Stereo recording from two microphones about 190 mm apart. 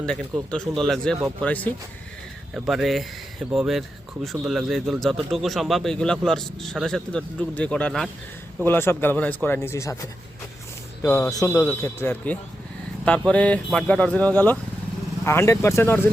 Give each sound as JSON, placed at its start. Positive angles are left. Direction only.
{"t": 0.0, "sound": "speech", "side_deg": 5}